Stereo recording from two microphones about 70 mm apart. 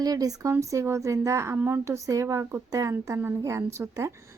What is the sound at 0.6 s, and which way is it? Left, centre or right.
Speech, right.